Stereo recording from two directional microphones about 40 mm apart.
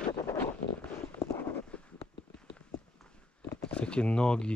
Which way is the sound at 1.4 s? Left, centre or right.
Left.